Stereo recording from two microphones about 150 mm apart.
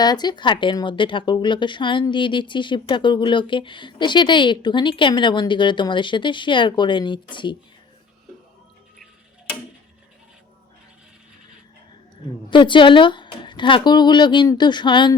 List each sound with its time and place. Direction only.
0.0 s speech: 30° left (ahead or behind)
12.5 s speech: 35° left (ahead or behind)